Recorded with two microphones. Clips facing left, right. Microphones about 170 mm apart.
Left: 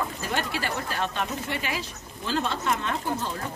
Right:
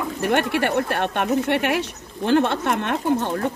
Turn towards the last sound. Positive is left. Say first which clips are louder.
# right 8 dB
turn(degrees=-65)  # may be behind; listen again after turning